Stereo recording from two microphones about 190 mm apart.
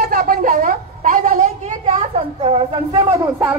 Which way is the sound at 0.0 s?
55° right (ahead or behind).